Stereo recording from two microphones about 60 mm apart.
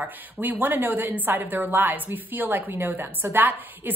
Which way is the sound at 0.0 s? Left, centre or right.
Right.